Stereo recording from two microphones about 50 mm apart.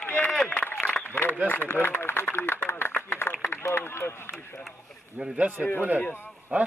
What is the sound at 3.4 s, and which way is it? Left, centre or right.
Run, left.